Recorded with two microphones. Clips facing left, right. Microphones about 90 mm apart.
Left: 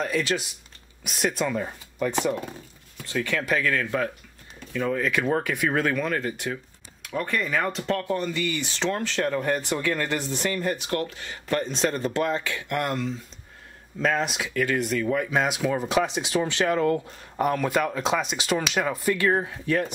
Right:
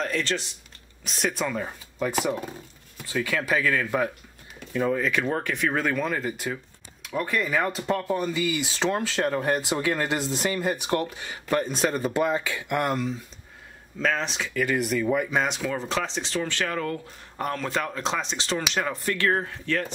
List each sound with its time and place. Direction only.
0.0 s speech: 5° left (ahead or behind)
13.9 s speech: 5° left (ahead or behind)
15.2 s speech: 5° left (ahead or behind)